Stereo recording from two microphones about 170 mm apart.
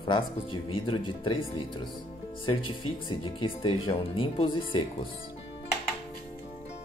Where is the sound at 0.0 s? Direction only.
30° left (ahead or behind).